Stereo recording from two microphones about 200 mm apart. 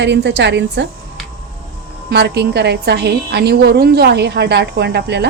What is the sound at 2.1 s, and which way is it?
A woman's voice, 55° right (ahead or behind).